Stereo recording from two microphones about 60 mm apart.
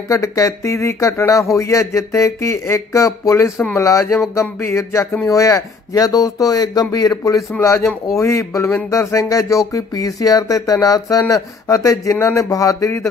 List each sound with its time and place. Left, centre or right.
0.1 s speech: left
7.6 s speech: left
12.4 s speech: left